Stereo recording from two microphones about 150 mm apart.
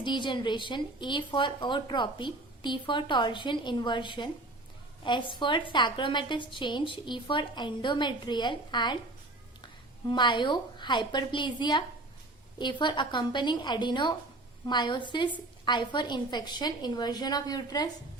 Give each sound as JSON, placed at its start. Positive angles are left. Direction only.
{"t": 0.0, "sound": "a woman's voice", "side_deg": 30}
{"t": 10.1, "sound": "a woman's voice", "side_deg": 30}